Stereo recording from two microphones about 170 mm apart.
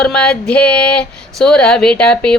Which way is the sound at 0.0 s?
5° left (ahead or behind).